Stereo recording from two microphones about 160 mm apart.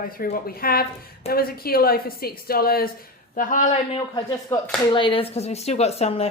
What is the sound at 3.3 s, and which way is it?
Speech, 55° left (ahead or behind).